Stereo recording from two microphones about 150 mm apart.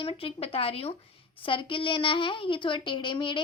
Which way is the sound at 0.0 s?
35° left (ahead or behind).